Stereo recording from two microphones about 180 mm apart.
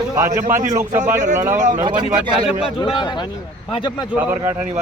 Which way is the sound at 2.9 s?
25° left (ahead or behind).